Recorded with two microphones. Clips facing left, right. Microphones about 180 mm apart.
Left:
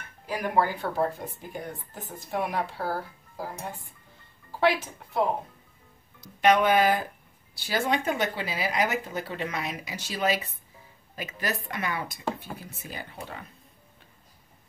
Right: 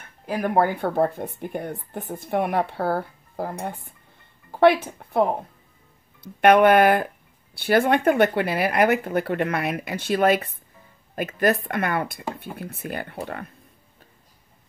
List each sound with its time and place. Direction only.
0.3 s speech: 55° right (ahead or behind)